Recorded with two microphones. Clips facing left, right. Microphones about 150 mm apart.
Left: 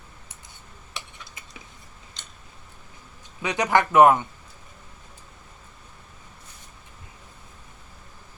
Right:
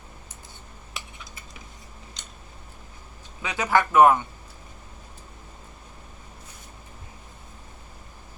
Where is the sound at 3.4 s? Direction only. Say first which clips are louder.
Left 1 dB; 20° left (ahead or behind).